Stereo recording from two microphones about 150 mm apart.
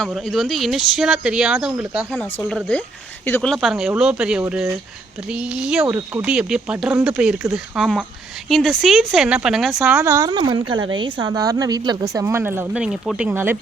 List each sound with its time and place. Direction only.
0.0 s speech: 5° left (ahead or behind)
3.2 s speech: 15° left (ahead or behind)
3.5 s speech: centre (ahead or behind)
5.8 s speech: 15° right (ahead or behind)
6.5 s speech: 5° right (ahead or behind)
9.8 s speech: 15° right (ahead or behind)
10.2 s speech: 30° right (ahead or behind); by 13.6 s 15° right (ahead or behind)